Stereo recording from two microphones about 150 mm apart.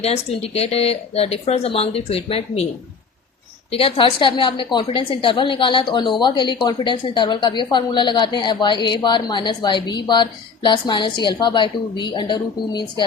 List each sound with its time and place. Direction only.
0.0 s speech: 45° left (ahead or behind)
3.7 s a woman's voice: 40° left (ahead or behind)